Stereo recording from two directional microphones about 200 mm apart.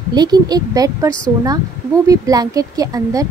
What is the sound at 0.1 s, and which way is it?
Speech, 20° right (ahead or behind).